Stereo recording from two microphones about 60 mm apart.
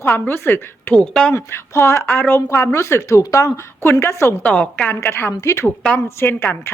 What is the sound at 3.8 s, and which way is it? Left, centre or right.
Speech, left.